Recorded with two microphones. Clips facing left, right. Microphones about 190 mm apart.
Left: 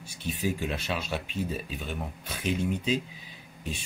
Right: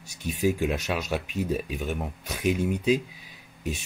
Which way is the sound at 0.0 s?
40° right (ahead or behind).